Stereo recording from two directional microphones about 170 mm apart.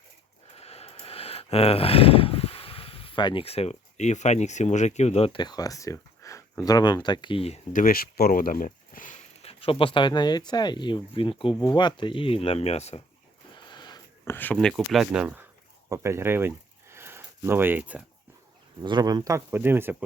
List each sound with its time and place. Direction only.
0.5 s speech: 35° left (ahead or behind)
13.7 s sniff: 25° left (ahead or behind)
14.3 s speech: 10° left (ahead or behind); by 16.5 s 15° right (ahead or behind)
16.9 s a sound: 15° right (ahead or behind)
18.8 s speech: 25° right (ahead or behind)